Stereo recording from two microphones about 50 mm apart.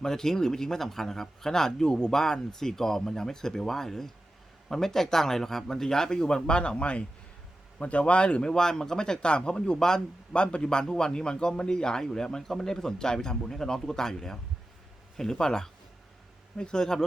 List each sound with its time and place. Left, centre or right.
0.0 s a man's voice: centre